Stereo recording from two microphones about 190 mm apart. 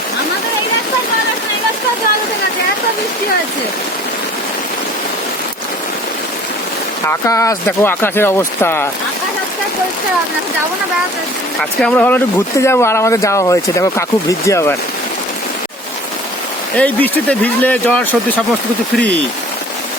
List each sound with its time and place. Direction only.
7.1 s speech: 15° left (ahead or behind)
11.8 s speech: 5° left (ahead or behind)
16.7 s speech: 10° left (ahead or behind)